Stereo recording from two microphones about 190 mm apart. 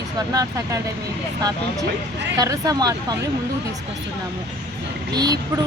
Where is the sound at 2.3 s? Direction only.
20° right (ahead or behind).